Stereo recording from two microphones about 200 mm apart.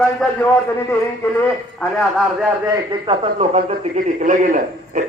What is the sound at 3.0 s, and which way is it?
A man's voice, 30° right (ahead or behind).